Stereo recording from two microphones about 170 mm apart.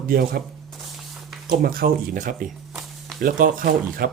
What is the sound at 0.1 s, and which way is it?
Speech, 60° right (ahead or behind).